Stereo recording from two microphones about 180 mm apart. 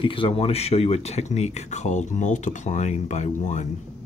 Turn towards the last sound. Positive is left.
turn(degrees=40)  # may be behind; listen again after turning